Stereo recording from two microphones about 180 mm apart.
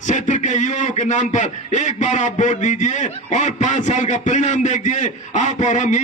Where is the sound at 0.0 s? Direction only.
40° left (ahead or behind).